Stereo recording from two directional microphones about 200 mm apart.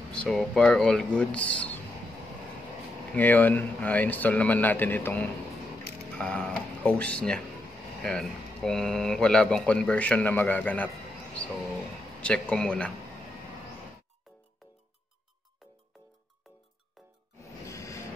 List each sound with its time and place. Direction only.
0.1 s speech: 5° left (ahead or behind)
3.2 s speech: 10° left (ahead or behind)
12.2 s speech: 5° left (ahead or behind)
17.4 s music: 15° left (ahead or behind)